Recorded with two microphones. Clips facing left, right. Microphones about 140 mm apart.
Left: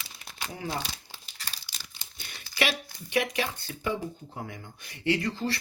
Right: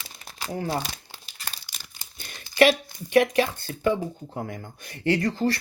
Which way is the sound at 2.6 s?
50° right (ahead or behind).